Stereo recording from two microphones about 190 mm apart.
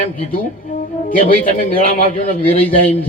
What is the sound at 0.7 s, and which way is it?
A man's voice, 45° left (ahead or behind).